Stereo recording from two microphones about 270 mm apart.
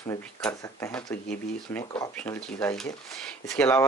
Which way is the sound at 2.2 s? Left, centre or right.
Centre.